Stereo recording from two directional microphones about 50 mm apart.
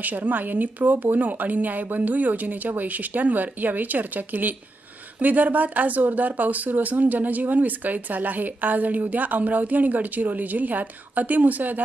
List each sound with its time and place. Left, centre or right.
0.0 s speech: right